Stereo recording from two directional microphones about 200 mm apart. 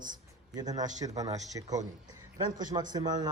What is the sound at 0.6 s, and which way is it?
A man's voice, 20° right (ahead or behind).